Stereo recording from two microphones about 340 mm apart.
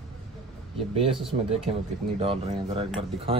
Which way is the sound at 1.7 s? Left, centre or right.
Centre.